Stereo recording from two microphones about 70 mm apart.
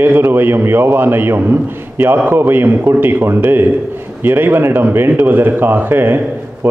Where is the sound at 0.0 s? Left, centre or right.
Right.